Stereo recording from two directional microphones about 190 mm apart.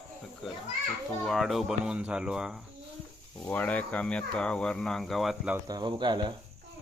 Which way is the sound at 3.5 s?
10° left (ahead or behind).